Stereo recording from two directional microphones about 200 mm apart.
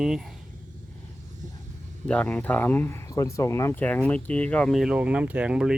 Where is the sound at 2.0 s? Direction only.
5° left (ahead or behind).